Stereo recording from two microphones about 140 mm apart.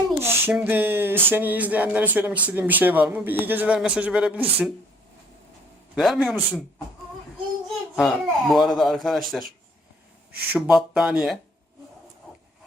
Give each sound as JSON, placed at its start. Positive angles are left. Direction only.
{"t": 0.2, "sound": "speech", "side_deg": -15}
{"t": 6.0, "sound": "speech", "side_deg": 0}
{"t": 7.9, "sound": "speech", "side_deg": 0}
{"t": 10.5, "sound": "speech", "side_deg": -5}